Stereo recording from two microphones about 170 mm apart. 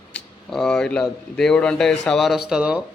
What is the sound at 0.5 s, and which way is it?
A man's voice, 5° left (ahead or behind).